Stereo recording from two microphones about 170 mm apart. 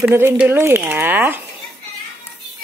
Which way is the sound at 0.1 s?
15° right (ahead or behind).